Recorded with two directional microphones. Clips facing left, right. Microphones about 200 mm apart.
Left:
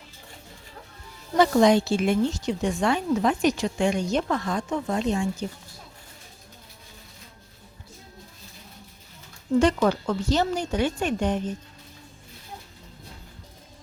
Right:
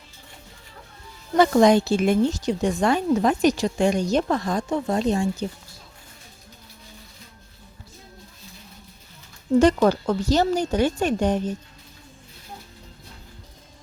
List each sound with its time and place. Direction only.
1.4 s speech: 45° right (ahead or behind)
9.6 s speech: 40° right (ahead or behind)